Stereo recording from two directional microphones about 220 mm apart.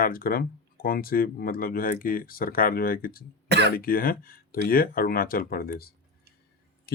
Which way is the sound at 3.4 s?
50° right (ahead or behind).